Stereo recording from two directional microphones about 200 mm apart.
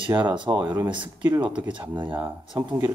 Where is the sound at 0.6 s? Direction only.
10° right (ahead or behind).